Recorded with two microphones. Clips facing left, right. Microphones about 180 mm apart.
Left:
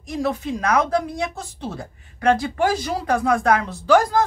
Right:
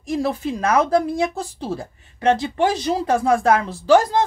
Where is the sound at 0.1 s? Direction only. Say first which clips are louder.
Right 2 dB; 30° right (ahead or behind).